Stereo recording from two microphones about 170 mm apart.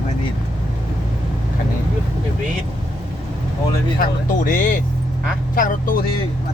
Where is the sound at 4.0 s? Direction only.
55° left (ahead or behind).